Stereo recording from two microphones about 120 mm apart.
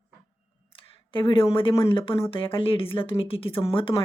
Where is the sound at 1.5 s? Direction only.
45° left (ahead or behind).